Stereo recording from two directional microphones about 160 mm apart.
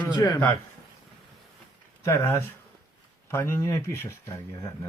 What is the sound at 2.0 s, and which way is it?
Speech, 15° left (ahead or behind).